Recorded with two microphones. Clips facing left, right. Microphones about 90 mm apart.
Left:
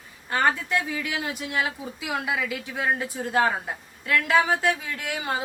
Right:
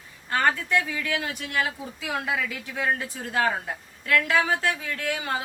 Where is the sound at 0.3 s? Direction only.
15° left (ahead or behind).